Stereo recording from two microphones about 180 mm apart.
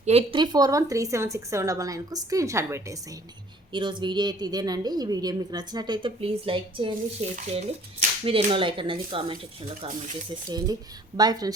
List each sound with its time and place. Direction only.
0.0 s a woman's voice: 35° right (ahead or behind)
11.2 s a woman's voice: 20° right (ahead or behind)